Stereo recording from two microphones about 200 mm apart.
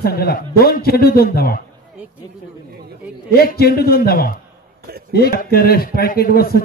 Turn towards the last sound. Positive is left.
turn(degrees=50)  # may be behind; listen again after turning